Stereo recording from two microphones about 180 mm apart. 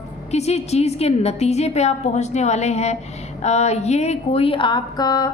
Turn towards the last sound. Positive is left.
turn(degrees=20)  # may be behind; listen again after turning